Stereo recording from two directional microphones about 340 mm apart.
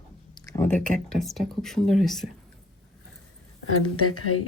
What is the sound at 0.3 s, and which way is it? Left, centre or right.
Speech, centre.